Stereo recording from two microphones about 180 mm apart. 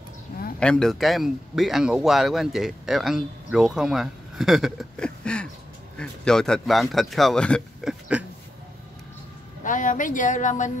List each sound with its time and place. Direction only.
0.6 s speech: 5° left (ahead or behind)
8.1 s a sound: 5° right (ahead or behind)
9.6 s speech: 45° left (ahead or behind)